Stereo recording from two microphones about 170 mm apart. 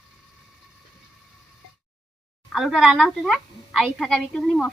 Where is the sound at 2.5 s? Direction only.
Centre (ahead or behind).